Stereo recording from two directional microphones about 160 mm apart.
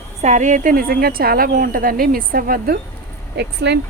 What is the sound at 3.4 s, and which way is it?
Speech, 90° right.